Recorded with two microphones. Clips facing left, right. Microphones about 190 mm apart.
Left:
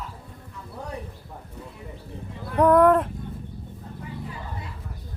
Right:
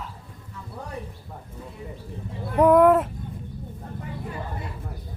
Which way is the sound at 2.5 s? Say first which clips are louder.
Right 1 dB; 10° right (ahead or behind).